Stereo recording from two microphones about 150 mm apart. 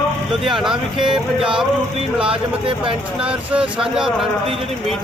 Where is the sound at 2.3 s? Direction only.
35° right (ahead or behind).